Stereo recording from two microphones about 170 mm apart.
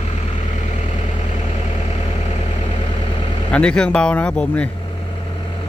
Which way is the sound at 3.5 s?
5° left (ahead or behind).